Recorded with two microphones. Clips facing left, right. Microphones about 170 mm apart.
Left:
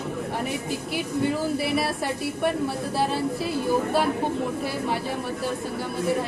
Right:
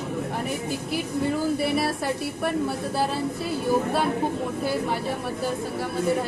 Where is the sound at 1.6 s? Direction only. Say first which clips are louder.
Right 1 dB; centre (ahead or behind).